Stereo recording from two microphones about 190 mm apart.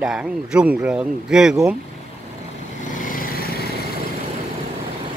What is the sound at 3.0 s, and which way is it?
Vehicle, 50° left (ahead or behind).